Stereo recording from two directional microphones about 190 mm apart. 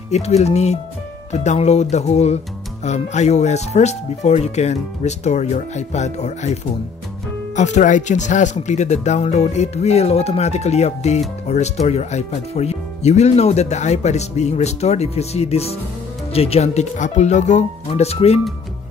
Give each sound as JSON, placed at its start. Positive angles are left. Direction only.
{"t": 0.1, "sound": "speech", "side_deg": 35}